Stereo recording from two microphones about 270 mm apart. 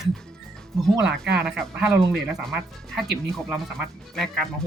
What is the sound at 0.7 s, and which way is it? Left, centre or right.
Speech, centre.